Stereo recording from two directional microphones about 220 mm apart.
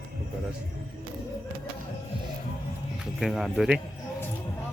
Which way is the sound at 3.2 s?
Centre (ahead or behind).